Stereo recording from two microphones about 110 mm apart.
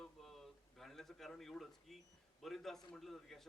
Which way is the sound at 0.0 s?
5° left (ahead or behind).